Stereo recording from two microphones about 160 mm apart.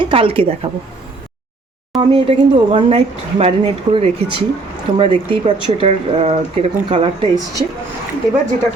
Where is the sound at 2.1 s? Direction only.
35° right (ahead or behind).